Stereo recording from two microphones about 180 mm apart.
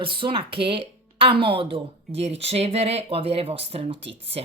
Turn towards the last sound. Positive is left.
turn(degrees=-35)  # may be behind; listen again after turning